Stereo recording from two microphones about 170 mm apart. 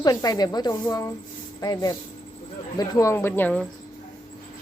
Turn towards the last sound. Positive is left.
turn(degrees=10)  # may be behind; listen again after turning